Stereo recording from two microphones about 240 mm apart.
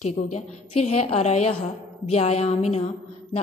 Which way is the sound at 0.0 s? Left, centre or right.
Left.